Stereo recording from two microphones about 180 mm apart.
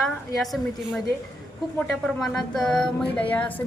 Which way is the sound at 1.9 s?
Centre (ahead or behind).